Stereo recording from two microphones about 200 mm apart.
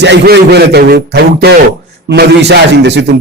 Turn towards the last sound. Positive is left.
turn(degrees=-60)  # may be behind; listen again after turning